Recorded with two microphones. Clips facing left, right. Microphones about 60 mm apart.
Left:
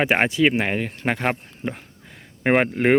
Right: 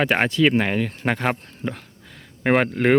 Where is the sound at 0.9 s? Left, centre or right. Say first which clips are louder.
Even; centre.